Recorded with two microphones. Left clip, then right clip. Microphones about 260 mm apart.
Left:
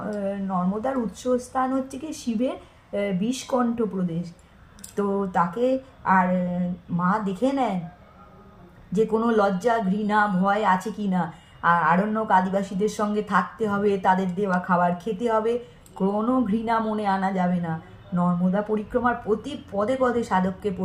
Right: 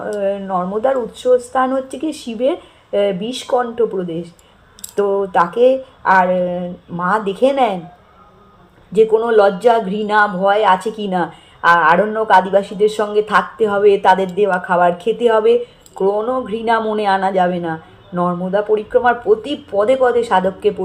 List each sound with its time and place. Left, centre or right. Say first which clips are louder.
0.0 s speech: right 10 dB; left
9.0 s speech: right 10 dB; left